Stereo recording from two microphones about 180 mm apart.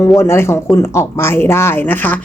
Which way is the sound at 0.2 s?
15° left (ahead or behind).